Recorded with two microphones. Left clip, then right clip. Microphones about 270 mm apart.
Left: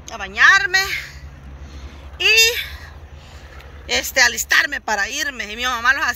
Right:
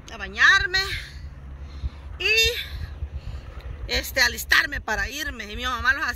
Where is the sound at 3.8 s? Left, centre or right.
Centre.